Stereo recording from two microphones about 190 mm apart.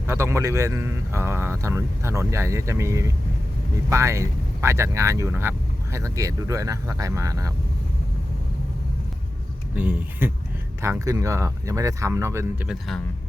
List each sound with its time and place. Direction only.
0.1 s speech: 15° right (ahead or behind)
9.7 s speech: 10° right (ahead or behind)